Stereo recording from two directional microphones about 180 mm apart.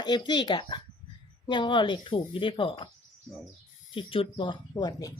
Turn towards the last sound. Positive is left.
turn(degrees=20)  # may be behind; listen again after turning